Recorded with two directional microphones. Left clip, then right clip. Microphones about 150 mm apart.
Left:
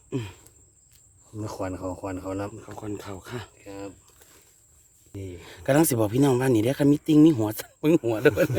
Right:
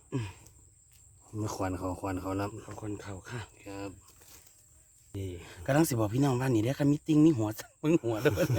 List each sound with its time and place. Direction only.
0.1 s a sound: 35° left (ahead or behind)
1.4 s speech: 10° right (ahead or behind)
2.7 s speech: 55° left (ahead or behind)
3.6 s speech: 5° right (ahead or behind)
5.1 s speech: 5° right (ahead or behind)
5.4 s speech: 75° left (ahead or behind)